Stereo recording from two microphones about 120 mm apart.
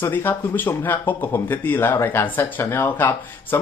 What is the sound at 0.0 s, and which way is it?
Speech, 15° left (ahead or behind).